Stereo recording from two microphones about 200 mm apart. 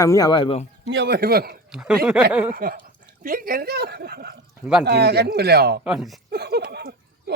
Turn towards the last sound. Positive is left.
turn(degrees=-55)  # may be behind; listen again after turning